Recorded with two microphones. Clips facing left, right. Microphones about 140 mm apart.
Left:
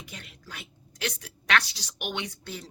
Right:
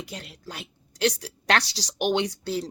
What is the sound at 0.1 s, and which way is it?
Speech, 35° right (ahead or behind).